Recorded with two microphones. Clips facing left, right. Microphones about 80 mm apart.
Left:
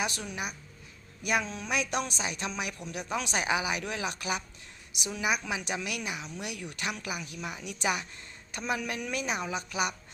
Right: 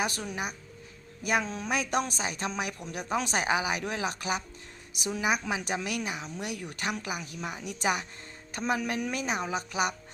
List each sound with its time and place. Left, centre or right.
0.0 s a woman's voice: right